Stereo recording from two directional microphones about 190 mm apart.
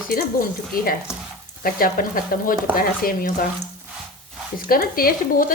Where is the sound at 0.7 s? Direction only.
50° left (ahead or behind).